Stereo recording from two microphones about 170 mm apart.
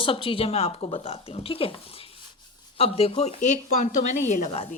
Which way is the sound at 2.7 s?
35° left (ahead or behind).